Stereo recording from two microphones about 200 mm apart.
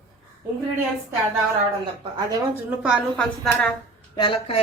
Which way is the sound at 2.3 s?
10° right (ahead or behind).